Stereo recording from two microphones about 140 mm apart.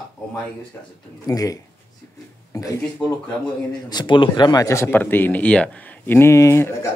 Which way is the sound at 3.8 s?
30° left (ahead or behind).